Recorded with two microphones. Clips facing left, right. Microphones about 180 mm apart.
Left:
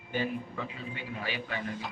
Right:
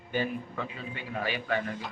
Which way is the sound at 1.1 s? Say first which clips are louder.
Right 7 dB; 50° right (ahead or behind).